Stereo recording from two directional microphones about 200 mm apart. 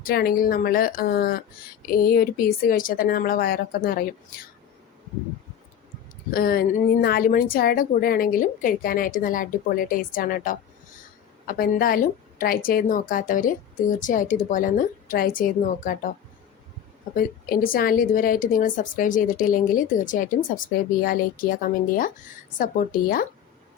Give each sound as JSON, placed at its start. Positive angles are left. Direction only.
{"t": 0.0, "sound": "a woman's voice", "side_deg": 50}
{"t": 6.3, "sound": "a woman's voice", "side_deg": 45}
{"t": 17.2, "sound": "a woman's voice", "side_deg": 45}